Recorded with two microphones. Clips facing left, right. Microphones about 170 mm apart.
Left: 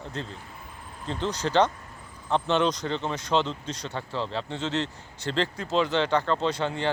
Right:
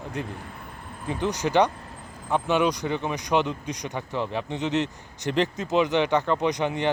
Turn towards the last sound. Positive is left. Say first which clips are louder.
# right 2 dB
turn(degrees=-15)  # may be behind; listen again after turning